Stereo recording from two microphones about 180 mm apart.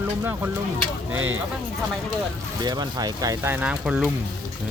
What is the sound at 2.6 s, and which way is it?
Speech, 20° right (ahead or behind).